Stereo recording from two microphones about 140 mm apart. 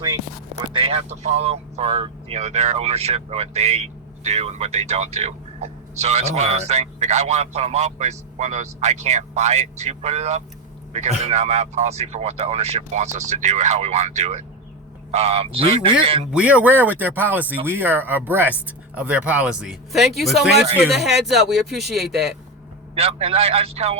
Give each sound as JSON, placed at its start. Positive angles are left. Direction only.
{"t": 0.7, "sound": "speech", "side_deg": -40}
{"t": 16.3, "sound": "speech", "side_deg": -10}
{"t": 23.0, "sound": "speech", "side_deg": -45}